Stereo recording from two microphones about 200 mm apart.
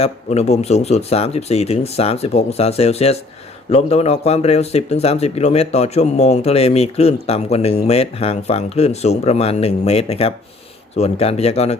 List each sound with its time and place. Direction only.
0.0 s speech: 35° left (ahead or behind)